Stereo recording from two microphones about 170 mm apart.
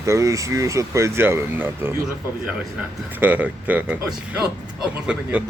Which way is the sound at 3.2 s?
10° right (ahead or behind).